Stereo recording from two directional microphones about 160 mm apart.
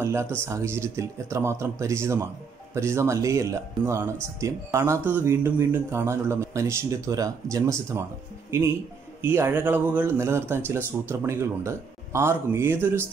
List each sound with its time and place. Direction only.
0.0 s speech: 15° right (ahead or behind)